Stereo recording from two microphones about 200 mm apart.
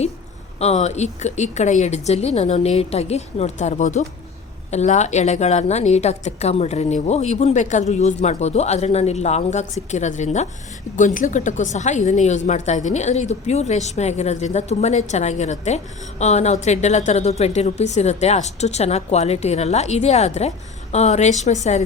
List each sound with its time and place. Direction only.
0.6 s a woman's voice: 35° left (ahead or behind)